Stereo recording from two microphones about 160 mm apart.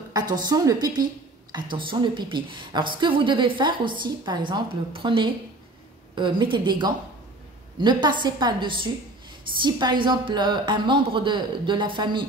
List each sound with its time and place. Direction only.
0.1 s a woman's voice: 25° right (ahead or behind)